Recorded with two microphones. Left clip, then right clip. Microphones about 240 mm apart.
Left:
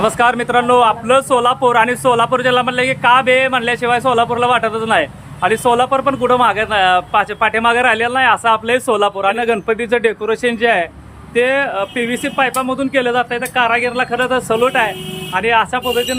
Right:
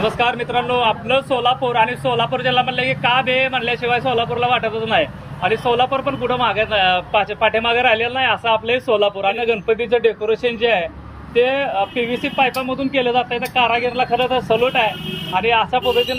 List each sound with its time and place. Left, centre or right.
0.0 s speech: centre